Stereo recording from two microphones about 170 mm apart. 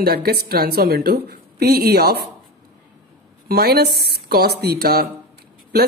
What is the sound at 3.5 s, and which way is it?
Speech, 65° right (ahead or behind).